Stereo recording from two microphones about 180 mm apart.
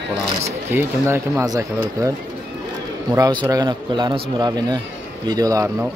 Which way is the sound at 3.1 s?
25° right (ahead or behind).